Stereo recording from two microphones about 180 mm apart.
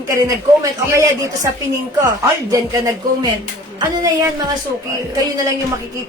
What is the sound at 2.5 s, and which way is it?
Speech, 20° right (ahead or behind).